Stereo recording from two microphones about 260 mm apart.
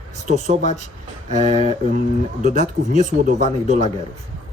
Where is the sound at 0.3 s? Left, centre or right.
Right.